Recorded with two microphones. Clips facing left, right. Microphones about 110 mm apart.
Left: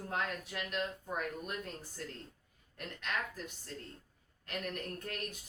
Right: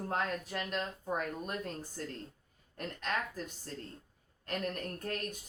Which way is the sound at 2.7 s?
35° right (ahead or behind).